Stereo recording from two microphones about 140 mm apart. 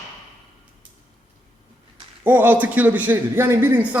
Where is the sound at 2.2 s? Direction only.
15° right (ahead or behind).